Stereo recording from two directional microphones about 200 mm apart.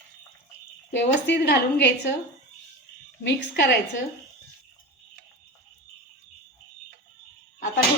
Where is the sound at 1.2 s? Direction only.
60° left (ahead or behind).